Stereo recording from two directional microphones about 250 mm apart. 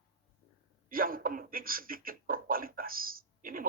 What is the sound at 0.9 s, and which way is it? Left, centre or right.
A man's voice, right.